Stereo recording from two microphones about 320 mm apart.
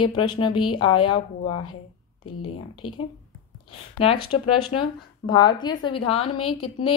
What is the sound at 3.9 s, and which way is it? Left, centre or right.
A woman's voice, centre.